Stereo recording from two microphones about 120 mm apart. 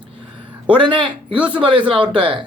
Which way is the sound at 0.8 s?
40° right (ahead or behind).